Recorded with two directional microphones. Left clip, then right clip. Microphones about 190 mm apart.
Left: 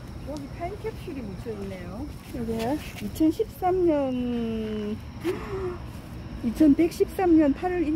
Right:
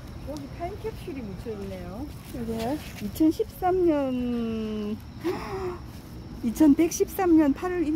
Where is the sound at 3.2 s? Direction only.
30° right (ahead or behind).